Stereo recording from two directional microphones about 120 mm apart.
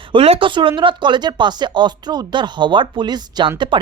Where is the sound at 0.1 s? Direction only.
50° right (ahead or behind).